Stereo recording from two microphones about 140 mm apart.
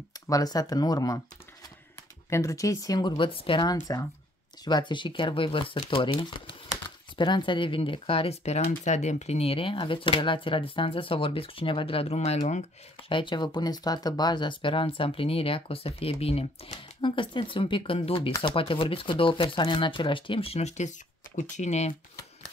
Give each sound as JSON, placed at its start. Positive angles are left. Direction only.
{"t": 0.1, "sound": "speech", "side_deg": 25}
{"t": 2.2, "sound": "speech", "side_deg": 20}
{"t": 7.2, "sound": "speech", "side_deg": 35}
{"t": 13.1, "sound": "speech", "side_deg": 35}